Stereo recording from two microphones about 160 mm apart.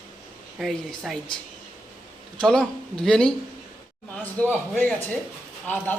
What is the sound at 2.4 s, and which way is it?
Speech, 5° left (ahead or behind).